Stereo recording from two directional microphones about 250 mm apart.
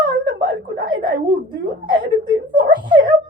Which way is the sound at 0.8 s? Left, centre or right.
Centre.